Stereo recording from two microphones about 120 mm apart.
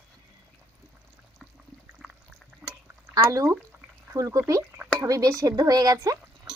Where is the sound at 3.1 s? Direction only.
25° right (ahead or behind).